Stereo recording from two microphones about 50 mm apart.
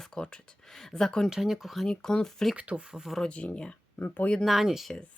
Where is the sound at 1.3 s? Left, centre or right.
Centre.